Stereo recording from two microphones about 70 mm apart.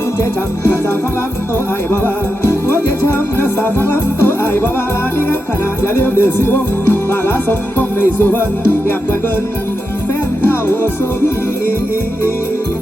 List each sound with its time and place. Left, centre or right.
2.4 s music: left
5.8 s music: left